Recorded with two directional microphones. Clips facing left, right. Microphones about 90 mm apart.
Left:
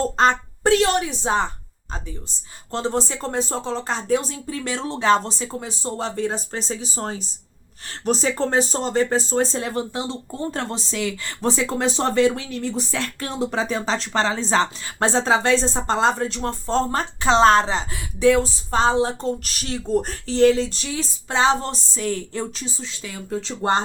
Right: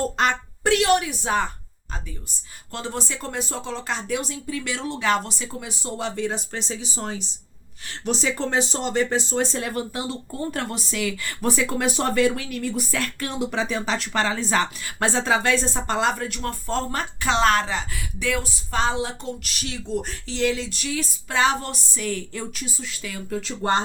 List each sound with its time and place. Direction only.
0.2 s speech: 35° left (ahead or behind)
2.7 s speech: 30° left (ahead or behind)